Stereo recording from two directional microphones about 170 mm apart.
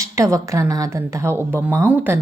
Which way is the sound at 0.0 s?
20° right (ahead or behind).